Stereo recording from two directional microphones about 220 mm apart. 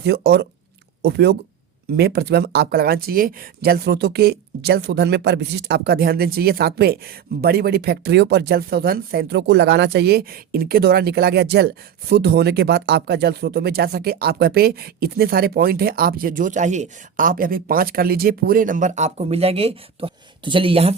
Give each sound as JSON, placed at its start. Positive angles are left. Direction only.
{"t": 0.0, "sound": "speech", "side_deg": -50}